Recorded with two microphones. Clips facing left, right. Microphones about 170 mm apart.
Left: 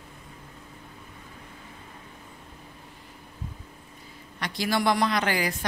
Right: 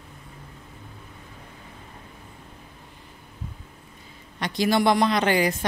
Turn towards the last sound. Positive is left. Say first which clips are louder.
# right 5 dB
turn(degrees=-25)  # may be behind; listen again after turning